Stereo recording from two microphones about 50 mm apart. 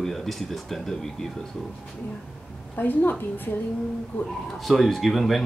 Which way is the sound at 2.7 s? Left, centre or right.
Left.